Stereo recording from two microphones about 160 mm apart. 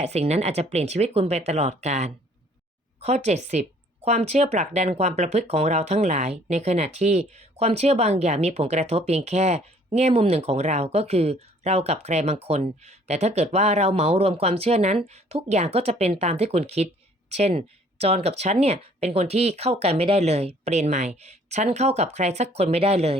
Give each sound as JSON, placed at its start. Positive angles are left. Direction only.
{"t": 0.0, "sound": "speech", "side_deg": -45}